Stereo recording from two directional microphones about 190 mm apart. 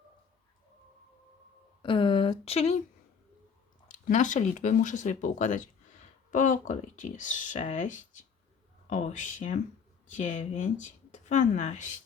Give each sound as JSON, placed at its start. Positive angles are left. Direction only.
{"t": 1.8, "sound": "speech", "side_deg": 25}
{"t": 3.8, "sound": "speech", "side_deg": 40}